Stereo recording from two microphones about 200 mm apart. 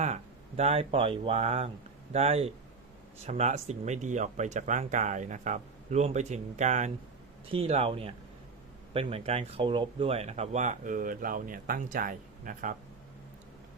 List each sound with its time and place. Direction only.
0.0 s speech: 35° right (ahead or behind)